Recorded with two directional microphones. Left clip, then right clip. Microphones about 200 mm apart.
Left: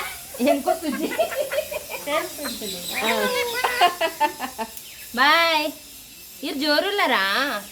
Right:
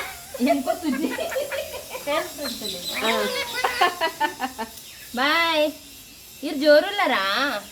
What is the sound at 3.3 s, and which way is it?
Chicken, 20° left (ahead or behind).